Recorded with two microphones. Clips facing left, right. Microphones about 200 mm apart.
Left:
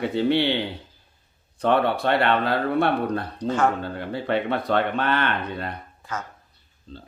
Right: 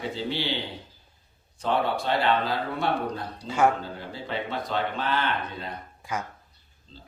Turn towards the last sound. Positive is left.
turn(degrees=60)  # may be behind; listen again after turning